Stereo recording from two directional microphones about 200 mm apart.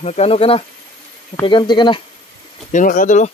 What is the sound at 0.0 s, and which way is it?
Speech, 30° left (ahead or behind).